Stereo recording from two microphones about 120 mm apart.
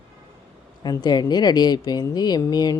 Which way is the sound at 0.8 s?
35° left (ahead or behind).